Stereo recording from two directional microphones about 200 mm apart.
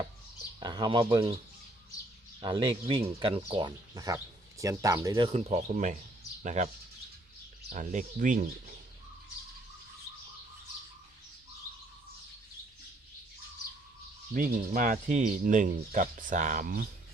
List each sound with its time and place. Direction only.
0.6 s speech: 20° right (ahead or behind)
2.4 s speech: 25° right (ahead or behind)
5.7 s speech: 40° right (ahead or behind)
7.7 s speech: 40° right (ahead or behind)
14.3 s speech: 45° right (ahead or behind)